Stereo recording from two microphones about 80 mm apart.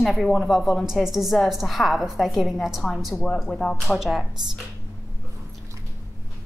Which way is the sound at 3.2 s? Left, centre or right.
Centre.